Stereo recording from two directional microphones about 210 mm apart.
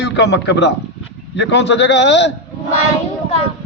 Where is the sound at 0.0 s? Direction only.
55° left (ahead or behind).